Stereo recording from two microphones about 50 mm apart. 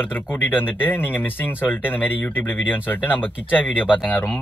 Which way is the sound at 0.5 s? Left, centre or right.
Left.